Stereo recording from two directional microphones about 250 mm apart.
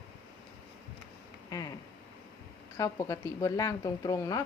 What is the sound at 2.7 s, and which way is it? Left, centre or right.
A woman's voice, centre.